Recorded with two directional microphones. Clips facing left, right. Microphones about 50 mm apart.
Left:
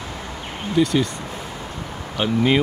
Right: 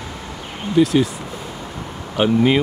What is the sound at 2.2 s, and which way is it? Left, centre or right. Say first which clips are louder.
Speech: right 6 dB; centre.